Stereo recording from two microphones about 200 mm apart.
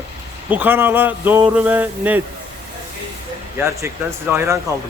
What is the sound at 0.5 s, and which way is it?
Speech, 10° right (ahead or behind).